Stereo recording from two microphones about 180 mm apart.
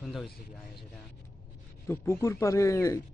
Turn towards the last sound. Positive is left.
turn(degrees=15)  # may be behind; listen again after turning